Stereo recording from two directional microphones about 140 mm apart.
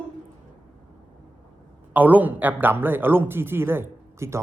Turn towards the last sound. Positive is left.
turn(degrees=-20)  # may be behind; listen again after turning